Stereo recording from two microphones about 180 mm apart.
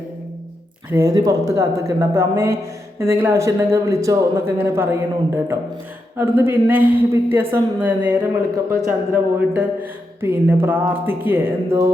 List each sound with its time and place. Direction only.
0.9 s speech: 15° right (ahead or behind)